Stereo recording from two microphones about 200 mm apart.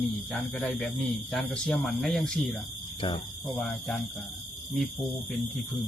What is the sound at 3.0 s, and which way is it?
Speech, 25° left (ahead or behind).